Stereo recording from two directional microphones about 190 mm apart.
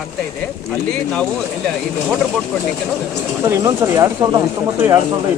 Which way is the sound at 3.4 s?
15° right (ahead or behind).